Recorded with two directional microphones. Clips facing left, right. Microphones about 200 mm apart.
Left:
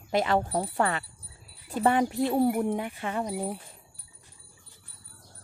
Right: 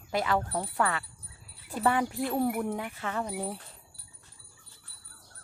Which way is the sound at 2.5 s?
30° left (ahead or behind).